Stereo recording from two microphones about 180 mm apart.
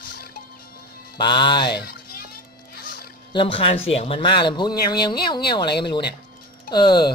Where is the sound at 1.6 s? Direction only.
65° left (ahead or behind).